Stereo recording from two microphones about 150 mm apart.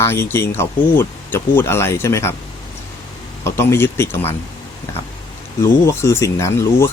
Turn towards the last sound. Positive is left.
turn(degrees=20)  # may be behind; listen again after turning